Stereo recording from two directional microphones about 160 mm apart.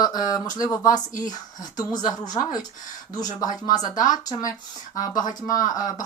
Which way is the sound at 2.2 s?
25° left (ahead or behind).